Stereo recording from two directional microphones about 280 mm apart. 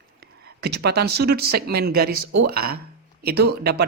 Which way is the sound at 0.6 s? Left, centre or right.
Right.